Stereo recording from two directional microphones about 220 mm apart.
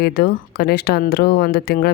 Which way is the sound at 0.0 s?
45° left (ahead or behind).